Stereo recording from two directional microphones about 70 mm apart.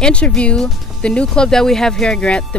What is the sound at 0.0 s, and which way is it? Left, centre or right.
Speech, centre.